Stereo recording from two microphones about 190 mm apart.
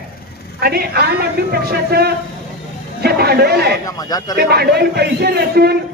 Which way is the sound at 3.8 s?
20° left (ahead or behind).